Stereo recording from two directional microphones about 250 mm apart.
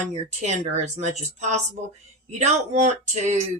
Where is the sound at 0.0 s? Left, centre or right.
Right.